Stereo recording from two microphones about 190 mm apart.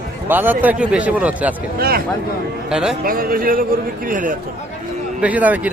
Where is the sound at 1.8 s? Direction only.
50° right (ahead or behind).